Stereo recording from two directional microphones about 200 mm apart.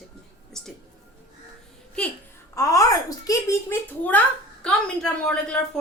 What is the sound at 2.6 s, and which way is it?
Speech, 15° left (ahead or behind).